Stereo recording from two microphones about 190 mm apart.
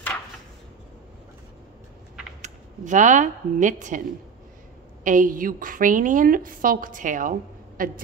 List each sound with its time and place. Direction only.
2.4 s speech: 40° right (ahead or behind)
5.0 s a woman's voice: 45° right (ahead or behind)